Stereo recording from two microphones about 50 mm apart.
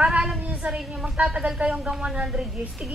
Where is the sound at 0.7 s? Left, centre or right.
Centre.